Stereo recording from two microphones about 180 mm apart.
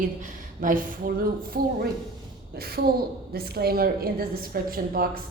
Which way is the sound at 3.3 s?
60° right (ahead or behind).